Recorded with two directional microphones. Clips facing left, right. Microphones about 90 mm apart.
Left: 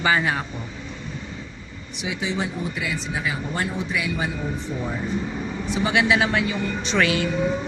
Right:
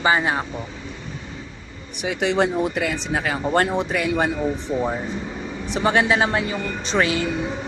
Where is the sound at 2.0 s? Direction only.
70° right (ahead or behind); by 4.3 s 55° right (ahead or behind).